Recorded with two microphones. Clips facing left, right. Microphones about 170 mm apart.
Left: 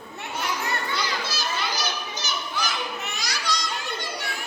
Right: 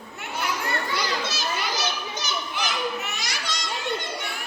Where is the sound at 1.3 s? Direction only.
25° right (ahead or behind).